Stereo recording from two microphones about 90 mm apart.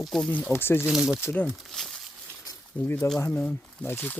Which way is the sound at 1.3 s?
20° left (ahead or behind).